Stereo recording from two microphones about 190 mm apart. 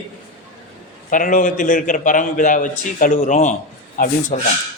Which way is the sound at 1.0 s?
45° left (ahead or behind).